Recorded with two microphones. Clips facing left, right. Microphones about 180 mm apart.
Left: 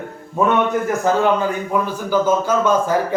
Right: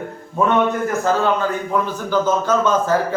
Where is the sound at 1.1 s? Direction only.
15° left (ahead or behind).